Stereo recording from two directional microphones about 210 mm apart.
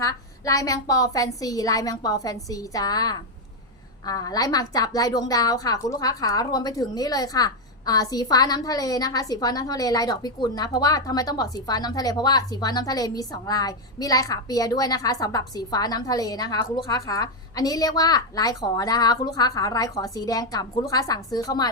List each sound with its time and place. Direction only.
0.0 s a woman's voice: 15° left (ahead or behind)